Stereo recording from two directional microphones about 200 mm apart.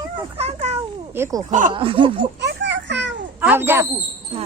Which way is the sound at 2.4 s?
60° right (ahead or behind).